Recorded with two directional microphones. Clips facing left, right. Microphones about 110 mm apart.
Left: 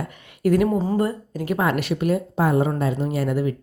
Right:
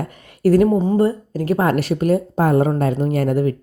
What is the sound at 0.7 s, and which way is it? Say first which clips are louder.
A woman's voice: right 5 dB; 25° right (ahead or behind).